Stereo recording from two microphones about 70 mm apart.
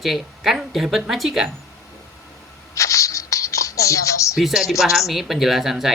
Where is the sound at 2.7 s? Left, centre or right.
Left.